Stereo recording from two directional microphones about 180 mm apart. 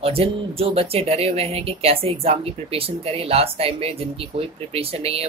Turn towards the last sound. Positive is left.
turn(degrees=-35)  # may be behind; listen again after turning